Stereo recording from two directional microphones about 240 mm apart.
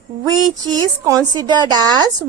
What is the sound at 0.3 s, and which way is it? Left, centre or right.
A woman's voice, centre.